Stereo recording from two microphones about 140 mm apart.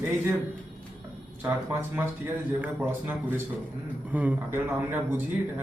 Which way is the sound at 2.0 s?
10° right (ahead or behind).